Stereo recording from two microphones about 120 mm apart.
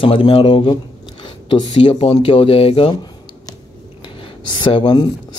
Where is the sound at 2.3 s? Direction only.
50° left (ahead or behind).